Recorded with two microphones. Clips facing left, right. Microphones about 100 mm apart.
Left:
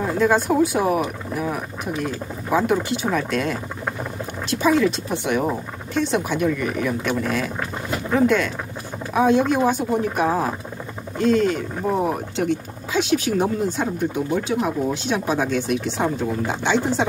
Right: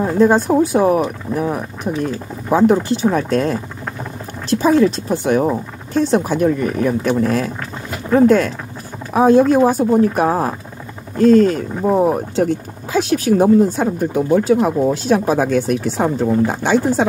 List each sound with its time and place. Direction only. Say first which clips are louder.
0.0 s speech: right 6 dB; 35° right (ahead or behind)